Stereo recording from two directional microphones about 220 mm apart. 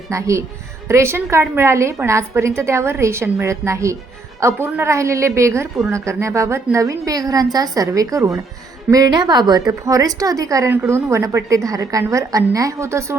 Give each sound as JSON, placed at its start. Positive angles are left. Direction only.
{"t": 0.1, "sound": "a woman's voice", "side_deg": -15}